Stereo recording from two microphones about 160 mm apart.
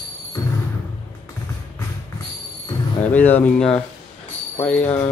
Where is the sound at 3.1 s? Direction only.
10° left (ahead or behind).